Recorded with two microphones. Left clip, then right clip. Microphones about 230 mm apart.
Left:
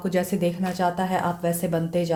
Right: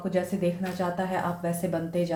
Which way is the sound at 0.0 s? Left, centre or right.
Left.